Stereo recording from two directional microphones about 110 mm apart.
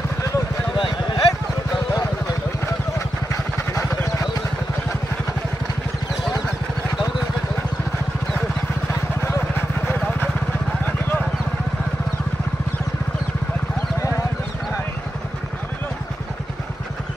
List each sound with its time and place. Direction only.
0.7 s vehicle: 45° left (ahead or behind)
3.7 s vehicle: 30° left (ahead or behind)